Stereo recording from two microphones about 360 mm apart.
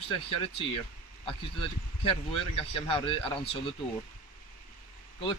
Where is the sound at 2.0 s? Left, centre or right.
Centre.